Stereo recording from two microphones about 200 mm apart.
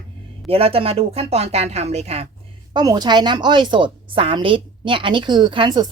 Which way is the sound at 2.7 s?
20° right (ahead or behind).